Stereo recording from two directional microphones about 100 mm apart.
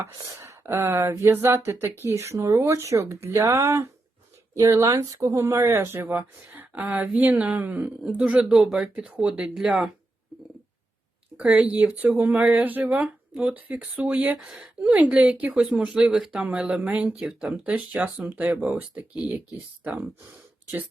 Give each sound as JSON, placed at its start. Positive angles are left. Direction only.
{"t": 0.0, "sound": "a woman's voice", "side_deg": -25}
{"t": 11.3, "sound": "a sound", "side_deg": -15}
{"t": 11.7, "sound": "a woman's voice", "side_deg": -15}
{"t": 14.3, "sound": "a woman's voice", "side_deg": -5}